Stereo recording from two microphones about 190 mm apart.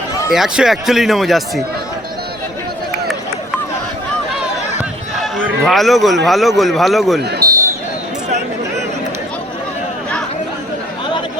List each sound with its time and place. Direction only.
0.3 s speech: centre (ahead or behind)
5.6 s speech: centre (ahead or behind)
7.2 s speech: 60° right (ahead or behind)